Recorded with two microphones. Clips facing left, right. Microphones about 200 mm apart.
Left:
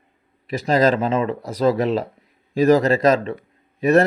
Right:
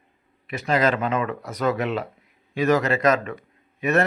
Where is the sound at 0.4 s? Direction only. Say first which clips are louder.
Left 4 dB; 35° left (ahead or behind).